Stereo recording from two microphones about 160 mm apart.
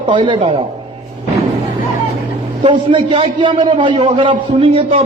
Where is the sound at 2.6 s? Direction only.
30° right (ahead or behind).